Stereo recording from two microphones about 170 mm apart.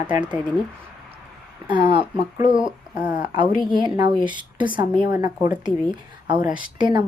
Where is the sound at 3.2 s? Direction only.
25° right (ahead or behind).